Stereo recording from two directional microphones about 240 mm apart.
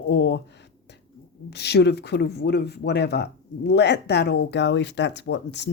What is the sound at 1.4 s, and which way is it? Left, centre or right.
Speech, left.